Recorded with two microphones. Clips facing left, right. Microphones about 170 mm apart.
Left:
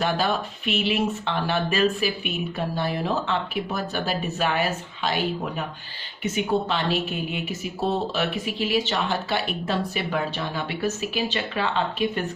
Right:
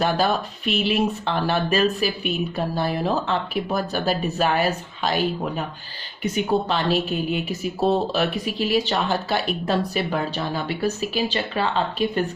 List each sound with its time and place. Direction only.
0.0 s speech: 40° right (ahead or behind)